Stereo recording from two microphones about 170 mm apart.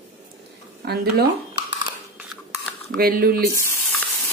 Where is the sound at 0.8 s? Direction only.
75° right (ahead or behind).